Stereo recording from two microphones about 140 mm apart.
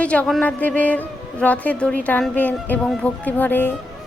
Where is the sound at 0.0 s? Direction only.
10° left (ahead or behind).